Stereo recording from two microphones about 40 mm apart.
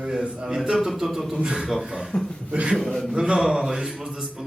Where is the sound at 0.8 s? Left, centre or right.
Centre.